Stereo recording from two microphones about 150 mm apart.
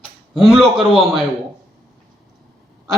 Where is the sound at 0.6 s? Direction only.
35° right (ahead or behind).